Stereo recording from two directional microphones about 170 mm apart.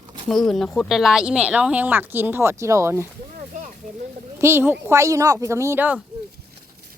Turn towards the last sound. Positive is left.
turn(degrees=-10)  # may be behind; listen again after turning